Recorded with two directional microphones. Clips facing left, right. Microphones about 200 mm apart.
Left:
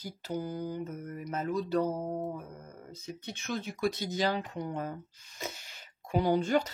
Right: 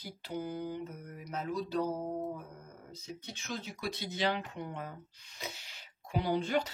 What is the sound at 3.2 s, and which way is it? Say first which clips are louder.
Speech: left 6 dB; 60° left (ahead or behind).